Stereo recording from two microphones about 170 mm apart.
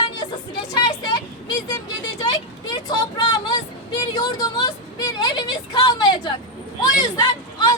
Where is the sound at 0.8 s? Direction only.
25° left (ahead or behind).